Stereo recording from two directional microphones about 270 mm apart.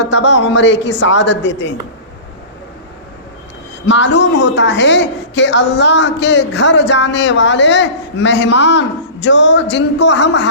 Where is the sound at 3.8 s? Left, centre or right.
Left.